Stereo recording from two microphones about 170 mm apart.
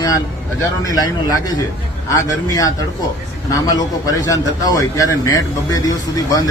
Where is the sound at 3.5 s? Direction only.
20° left (ahead or behind).